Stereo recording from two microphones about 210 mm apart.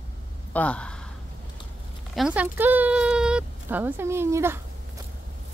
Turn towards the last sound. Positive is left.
turn(degrees=-10)  # may be behind; listen again after turning